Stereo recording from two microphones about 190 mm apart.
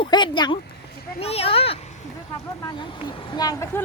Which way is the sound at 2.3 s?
20° left (ahead or behind).